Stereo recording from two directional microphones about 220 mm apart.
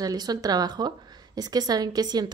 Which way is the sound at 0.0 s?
15° right (ahead or behind).